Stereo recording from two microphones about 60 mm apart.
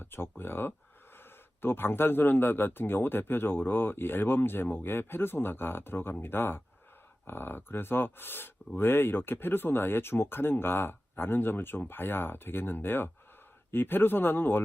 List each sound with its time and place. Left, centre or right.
0.0 s a man's voice: left